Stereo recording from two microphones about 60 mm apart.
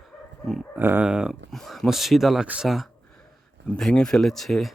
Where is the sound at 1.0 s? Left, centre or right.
Centre.